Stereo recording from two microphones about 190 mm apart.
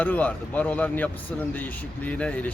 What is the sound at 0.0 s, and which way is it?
A man's voice, 10° left (ahead or behind).